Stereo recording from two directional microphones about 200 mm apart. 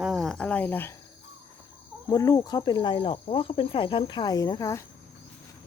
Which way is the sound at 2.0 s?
20° left (ahead or behind).